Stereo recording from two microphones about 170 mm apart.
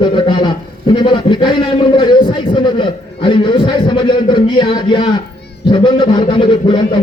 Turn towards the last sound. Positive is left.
turn(degrees=30)  # may be behind; listen again after turning